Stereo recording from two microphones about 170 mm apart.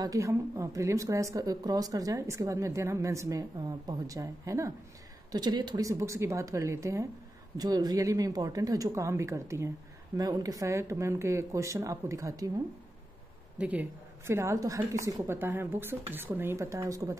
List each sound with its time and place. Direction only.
0.0 s a woman's voice: 20° right (ahead or behind)
13.6 s a woman's voice: 10° right (ahead or behind)